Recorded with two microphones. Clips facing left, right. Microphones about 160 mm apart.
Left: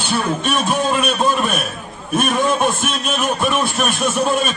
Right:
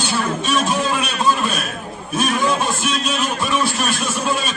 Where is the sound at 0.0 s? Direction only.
55° left (ahead or behind).